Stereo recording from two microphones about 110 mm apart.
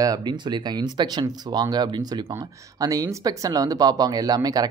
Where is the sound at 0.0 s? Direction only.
35° right (ahead or behind).